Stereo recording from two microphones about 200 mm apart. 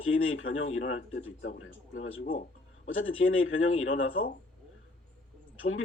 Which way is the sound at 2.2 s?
45° left (ahead or behind).